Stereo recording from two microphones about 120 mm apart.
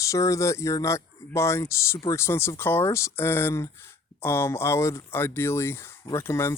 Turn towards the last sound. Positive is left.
turn(degrees=20)  # may be behind; listen again after turning